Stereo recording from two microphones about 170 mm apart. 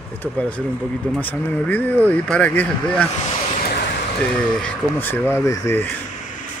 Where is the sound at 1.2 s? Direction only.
10° left (ahead or behind).